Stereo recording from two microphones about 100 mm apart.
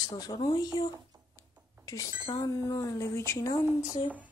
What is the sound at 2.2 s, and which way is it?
Speech, 50° left (ahead or behind).